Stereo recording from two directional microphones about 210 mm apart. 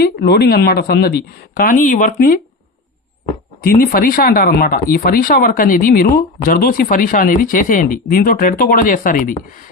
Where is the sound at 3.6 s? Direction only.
45° left (ahead or behind).